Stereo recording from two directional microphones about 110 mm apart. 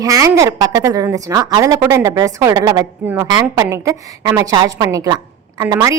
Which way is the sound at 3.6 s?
25° right (ahead or behind).